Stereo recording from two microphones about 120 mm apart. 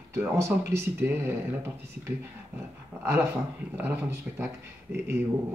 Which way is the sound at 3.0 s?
20° right (ahead or behind).